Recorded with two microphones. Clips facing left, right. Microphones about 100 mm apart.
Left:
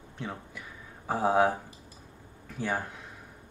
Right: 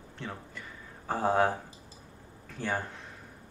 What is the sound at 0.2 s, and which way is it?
Speech, 10° left (ahead or behind).